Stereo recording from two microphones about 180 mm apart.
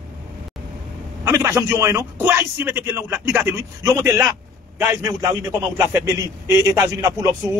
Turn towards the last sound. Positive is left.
turn(degrees=-20)  # may be behind; listen again after turning